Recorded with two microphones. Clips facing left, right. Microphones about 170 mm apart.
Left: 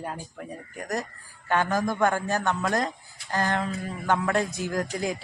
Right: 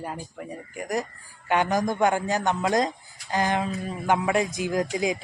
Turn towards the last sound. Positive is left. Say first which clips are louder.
# right 3 dB
turn(degrees=-15)  # may be behind; listen again after turning